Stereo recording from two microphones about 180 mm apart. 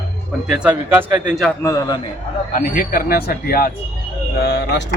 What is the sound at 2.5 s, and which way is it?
Speech, 50° left (ahead or behind).